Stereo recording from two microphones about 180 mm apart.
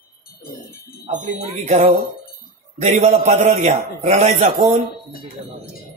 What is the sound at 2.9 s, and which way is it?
Mantra, 35° right (ahead or behind).